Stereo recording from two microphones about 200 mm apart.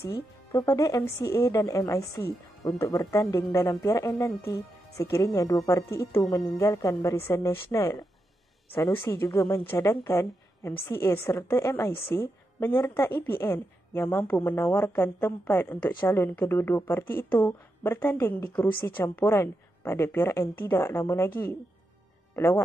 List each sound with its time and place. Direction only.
0.0 s speech: 15° left (ahead or behind)
22.3 s speech: 10° left (ahead or behind)